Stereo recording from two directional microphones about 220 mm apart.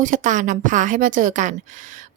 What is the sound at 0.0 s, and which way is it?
A woman's voice, 35° right (ahead or behind).